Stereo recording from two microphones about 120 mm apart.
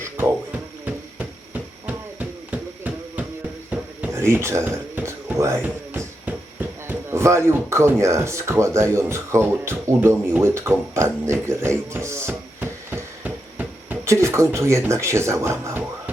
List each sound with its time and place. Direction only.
0.9 s a sound: 15° right (ahead or behind)
5.6 s music: 15° right (ahead or behind)
6.8 s speech: 20° right (ahead or behind)